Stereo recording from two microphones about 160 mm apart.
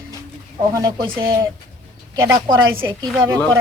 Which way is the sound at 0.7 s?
25° right (ahead or behind).